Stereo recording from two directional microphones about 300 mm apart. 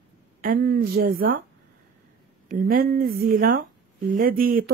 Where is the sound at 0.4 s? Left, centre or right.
Right.